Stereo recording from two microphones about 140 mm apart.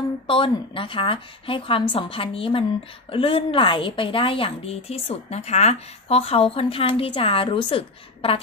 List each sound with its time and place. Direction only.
0.3 s a woman's voice: 40° left (ahead or behind)